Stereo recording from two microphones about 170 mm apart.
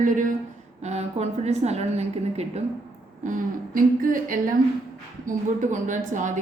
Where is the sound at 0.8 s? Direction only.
40° right (ahead or behind).